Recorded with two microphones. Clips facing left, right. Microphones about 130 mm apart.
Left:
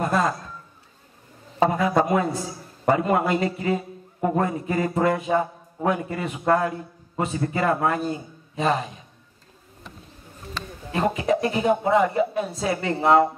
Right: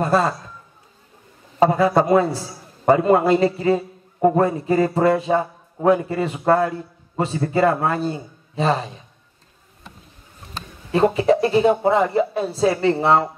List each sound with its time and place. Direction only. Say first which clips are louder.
0.0 s a sound: right 4 dB; 30° right (ahead or behind)
1.6 s a man's voice: right 4 dB; 30° right (ahead or behind)
10.9 s a man's voice: right 6 dB; 30° right (ahead or behind)